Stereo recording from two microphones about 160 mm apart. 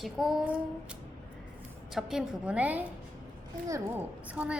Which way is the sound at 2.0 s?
5° right (ahead or behind).